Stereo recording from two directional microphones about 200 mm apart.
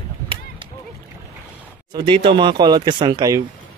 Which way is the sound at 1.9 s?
25° right (ahead or behind).